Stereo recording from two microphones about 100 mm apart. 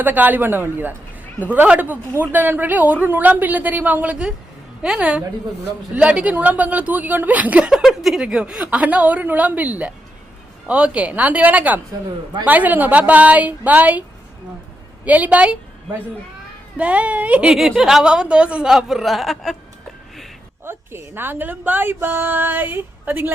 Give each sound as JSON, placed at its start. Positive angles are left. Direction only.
{"t": 0.0, "sound": "a woman's voice", "side_deg": -15}
{"t": 15.0, "sound": "a woman's voice", "side_deg": -15}
{"t": 16.7, "sound": "a woman's voice", "side_deg": -15}
{"t": 17.5, "sound": "speech", "side_deg": -5}
{"t": 20.7, "sound": "a woman's voice", "side_deg": -20}